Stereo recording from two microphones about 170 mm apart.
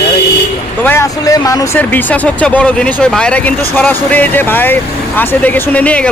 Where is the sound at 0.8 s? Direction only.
15° left (ahead or behind).